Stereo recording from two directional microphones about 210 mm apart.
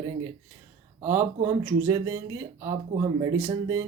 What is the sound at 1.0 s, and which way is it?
Speech, 15° right (ahead or behind).